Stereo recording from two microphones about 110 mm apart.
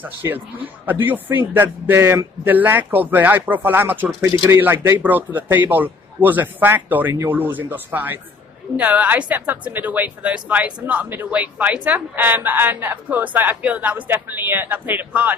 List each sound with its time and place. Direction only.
0.0 s a woman's voice: 15° right (ahead or behind)